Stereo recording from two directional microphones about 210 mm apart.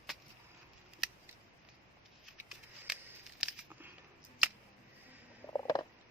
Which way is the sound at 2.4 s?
5° right (ahead or behind).